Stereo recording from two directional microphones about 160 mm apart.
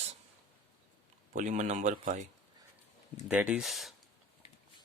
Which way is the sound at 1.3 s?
50° right (ahead or behind).